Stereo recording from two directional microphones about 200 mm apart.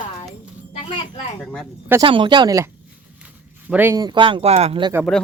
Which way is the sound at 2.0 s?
25° right (ahead or behind).